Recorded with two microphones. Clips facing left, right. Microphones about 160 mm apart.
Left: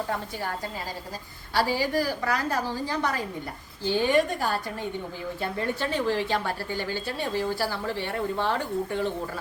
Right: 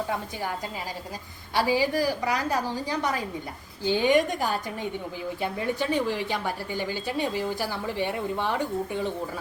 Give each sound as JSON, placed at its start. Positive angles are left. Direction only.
{"t": 1.5, "sound": "a woman's voice", "side_deg": -15}